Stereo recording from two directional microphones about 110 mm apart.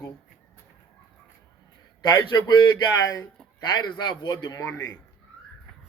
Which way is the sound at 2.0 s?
45° left (ahead or behind).